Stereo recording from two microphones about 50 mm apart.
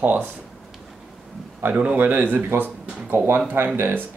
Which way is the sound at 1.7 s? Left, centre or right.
Right.